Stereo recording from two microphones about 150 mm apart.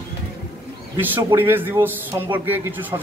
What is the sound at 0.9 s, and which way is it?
A man's voice, 15° right (ahead or behind).